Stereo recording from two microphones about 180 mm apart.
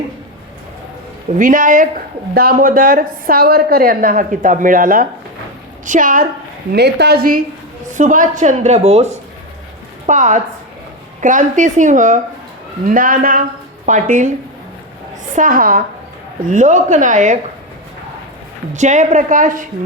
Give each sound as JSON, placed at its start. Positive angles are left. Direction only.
{"t": 1.4, "sound": "a woman's voice", "side_deg": -45}
{"t": 6.7, "sound": "a woman's voice", "side_deg": -65}
{"t": 7.9, "sound": "a woman's voice", "side_deg": -45}
{"t": 15.4, "sound": "a woman's voice", "side_deg": -50}
{"t": 18.7, "sound": "a woman's voice", "side_deg": -40}